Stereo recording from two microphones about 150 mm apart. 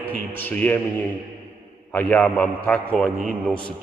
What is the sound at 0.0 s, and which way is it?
A man's voice, 10° left (ahead or behind).